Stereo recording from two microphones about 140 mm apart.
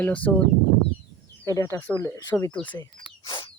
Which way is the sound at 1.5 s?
20° left (ahead or behind).